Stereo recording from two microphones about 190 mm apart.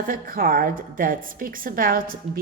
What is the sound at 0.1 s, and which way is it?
A woman's voice, 50° right (ahead or behind).